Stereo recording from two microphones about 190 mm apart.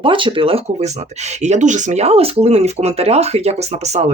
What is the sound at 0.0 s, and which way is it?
Speech, 25° right (ahead or behind).